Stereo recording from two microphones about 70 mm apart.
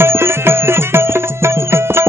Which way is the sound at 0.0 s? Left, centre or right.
Right.